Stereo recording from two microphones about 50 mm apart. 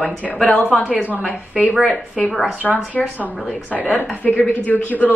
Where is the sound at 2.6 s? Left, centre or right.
Centre.